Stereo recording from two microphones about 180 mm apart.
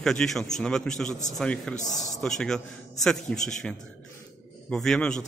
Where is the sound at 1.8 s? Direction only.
45° left (ahead or behind).